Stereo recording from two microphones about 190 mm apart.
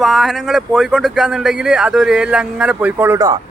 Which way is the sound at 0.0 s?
Centre (ahead or behind).